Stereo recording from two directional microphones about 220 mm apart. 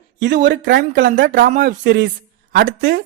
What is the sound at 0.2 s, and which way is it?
Speech, 50° right (ahead or behind).